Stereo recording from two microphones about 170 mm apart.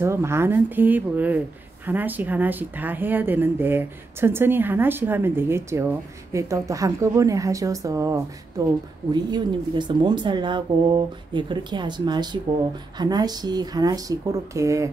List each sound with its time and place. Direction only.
0.0 s speech: 15° right (ahead or behind)